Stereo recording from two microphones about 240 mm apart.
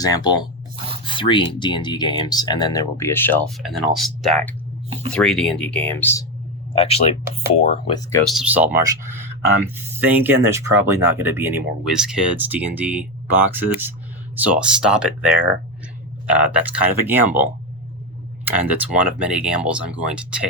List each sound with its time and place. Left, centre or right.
0.0 s speech: centre
6.7 s speech: left
8.2 s speech: centre